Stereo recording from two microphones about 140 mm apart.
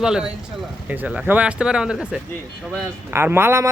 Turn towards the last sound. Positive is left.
turn(degrees=-20)  # may be behind; listen again after turning